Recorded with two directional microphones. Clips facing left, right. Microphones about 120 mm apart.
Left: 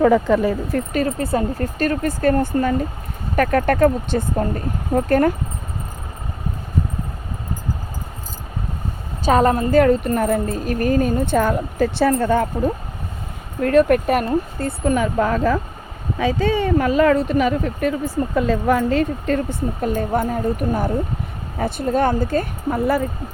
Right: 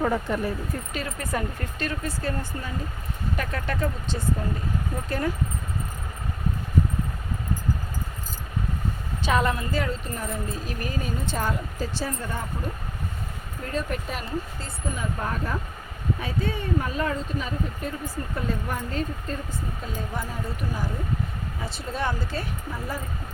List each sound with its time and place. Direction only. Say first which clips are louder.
0.0 s speech: left 10 dB; 90° left
0.9 s speech: left 10 dB; 35° left (ahead or behind); by 5.3 s 55° left (ahead or behind)
9.2 s speech: left 9 dB; 40° left (ahead or behind); by 12.7 s 85° left
13.6 s speech: left 16 dB; 70° left (ahead or behind)
18.3 s speech: left 13 dB; 90° left; by 22.8 s 50° left (ahead or behind)